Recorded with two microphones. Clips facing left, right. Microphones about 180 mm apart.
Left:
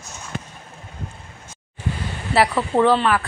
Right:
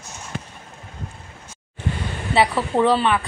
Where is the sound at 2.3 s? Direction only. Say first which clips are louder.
Left 1 dB; centre (ahead or behind).